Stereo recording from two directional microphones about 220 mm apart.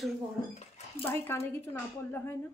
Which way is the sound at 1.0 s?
10° left (ahead or behind).